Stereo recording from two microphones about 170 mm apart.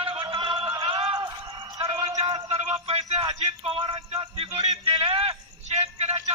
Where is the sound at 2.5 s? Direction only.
40° right (ahead or behind).